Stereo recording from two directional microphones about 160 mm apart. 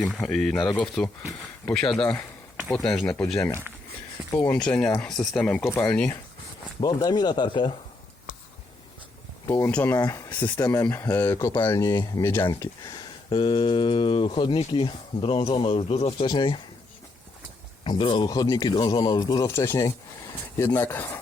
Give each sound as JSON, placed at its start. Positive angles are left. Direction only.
{"t": 0.0, "sound": "speech", "side_deg": 5}
{"t": 4.4, "sound": "speech", "side_deg": 10}
{"t": 6.7, "sound": "speech", "side_deg": 25}
{"t": 9.5, "sound": "speech", "side_deg": 15}
{"t": 13.3, "sound": "speech", "side_deg": 30}
{"t": 17.8, "sound": "speech", "side_deg": 30}